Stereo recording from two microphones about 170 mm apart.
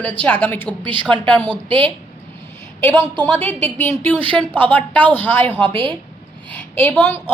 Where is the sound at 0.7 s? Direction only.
30° right (ahead or behind).